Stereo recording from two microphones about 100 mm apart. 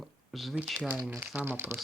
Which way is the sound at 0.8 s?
20° right (ahead or behind).